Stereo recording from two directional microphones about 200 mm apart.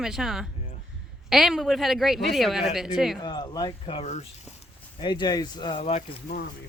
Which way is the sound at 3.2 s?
20° left (ahead or behind).